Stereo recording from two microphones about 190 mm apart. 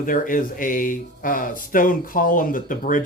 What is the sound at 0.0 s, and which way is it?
Speech, 45° left (ahead or behind).